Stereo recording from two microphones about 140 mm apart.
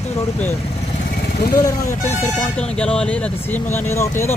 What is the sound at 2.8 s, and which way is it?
Speech, 5° left (ahead or behind).